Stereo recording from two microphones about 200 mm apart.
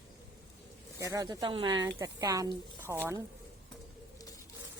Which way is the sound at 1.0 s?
15° right (ahead or behind).